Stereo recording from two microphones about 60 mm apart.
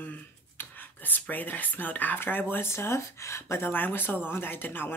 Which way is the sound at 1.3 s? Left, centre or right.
Left.